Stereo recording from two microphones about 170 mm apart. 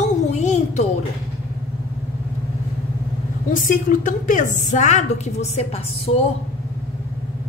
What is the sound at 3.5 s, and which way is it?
A woman's voice, 50° left (ahead or behind).